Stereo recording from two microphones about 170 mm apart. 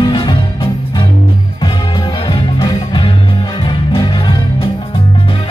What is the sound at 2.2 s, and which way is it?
Music, 25° left (ahead or behind).